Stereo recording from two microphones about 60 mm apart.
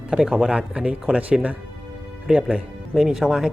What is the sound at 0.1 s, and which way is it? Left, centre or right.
Speech, centre.